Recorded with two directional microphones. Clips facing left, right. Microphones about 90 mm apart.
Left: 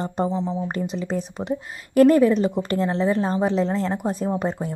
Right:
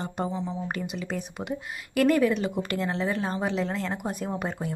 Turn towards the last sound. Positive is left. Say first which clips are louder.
# left 6 dB
turn(degrees=30)  # may be behind; listen again after turning